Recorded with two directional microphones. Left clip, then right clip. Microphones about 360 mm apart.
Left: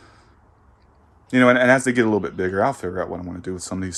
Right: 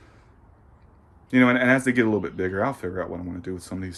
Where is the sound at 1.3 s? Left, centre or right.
Centre.